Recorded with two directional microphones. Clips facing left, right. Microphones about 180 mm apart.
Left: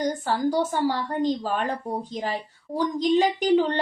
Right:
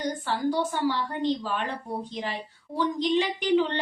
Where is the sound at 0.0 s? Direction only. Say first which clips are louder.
Left 3 dB; 45° left (ahead or behind).